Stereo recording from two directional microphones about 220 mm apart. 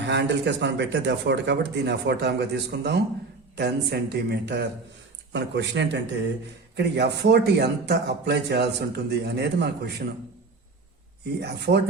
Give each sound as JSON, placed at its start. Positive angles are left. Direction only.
{"t": 0.1, "sound": "a man's voice", "side_deg": -55}
{"t": 11.3, "sound": "a man's voice", "side_deg": -50}